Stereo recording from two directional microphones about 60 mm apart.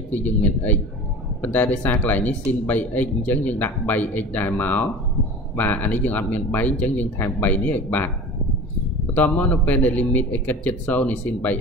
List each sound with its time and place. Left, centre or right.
0.1 s speech: left
9.1 s speech: left